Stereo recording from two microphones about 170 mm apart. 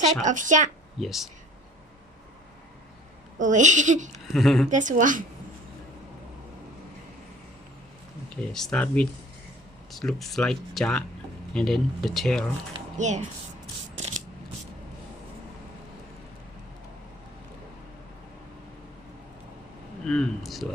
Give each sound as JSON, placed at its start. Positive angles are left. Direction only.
{"t": 0.3, "sound": "speech", "side_deg": -50}
{"t": 0.9, "sound": "speech", "side_deg": 0}
{"t": 3.3, "sound": "speech", "side_deg": -50}
{"t": 4.3, "sound": "speech", "side_deg": 0}
{"t": 4.7, "sound": "speech", "side_deg": -45}
{"t": 8.4, "sound": "speech", "side_deg": 5}
{"t": 13.0, "sound": "speech", "side_deg": -45}
{"t": 20.1, "sound": "speech", "side_deg": 5}